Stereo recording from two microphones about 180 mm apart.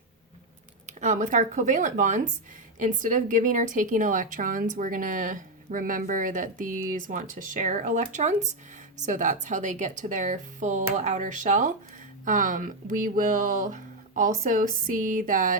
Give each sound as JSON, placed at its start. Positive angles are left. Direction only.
{"t": 0.9, "sound": "a woman's voice", "side_deg": -45}